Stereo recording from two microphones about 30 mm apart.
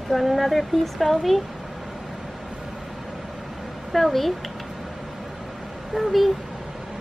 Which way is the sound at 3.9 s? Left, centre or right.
Centre.